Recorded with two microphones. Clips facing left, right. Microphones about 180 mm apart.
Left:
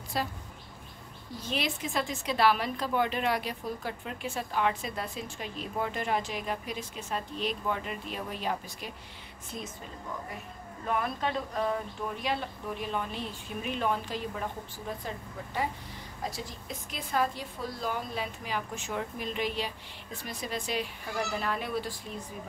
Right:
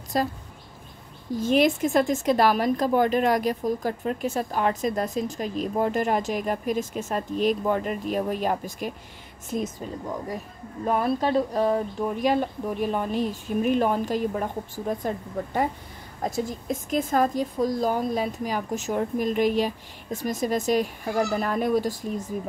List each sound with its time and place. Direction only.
0.1 s a woman's voice: 45° right (ahead or behind)
1.3 s a woman's voice: 50° right (ahead or behind)